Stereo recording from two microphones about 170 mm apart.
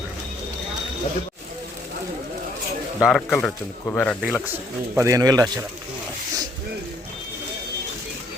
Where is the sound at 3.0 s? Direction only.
Centre (ahead or behind).